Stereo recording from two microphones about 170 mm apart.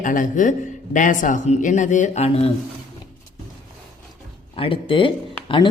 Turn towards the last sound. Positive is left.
turn(degrees=30)  # may be behind; listen again after turning